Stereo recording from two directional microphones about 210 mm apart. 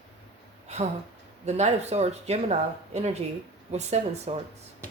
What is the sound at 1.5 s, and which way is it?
A woman's voice, 30° right (ahead or behind).